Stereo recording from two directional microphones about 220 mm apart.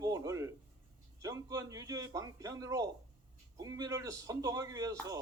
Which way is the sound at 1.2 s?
15° right (ahead or behind).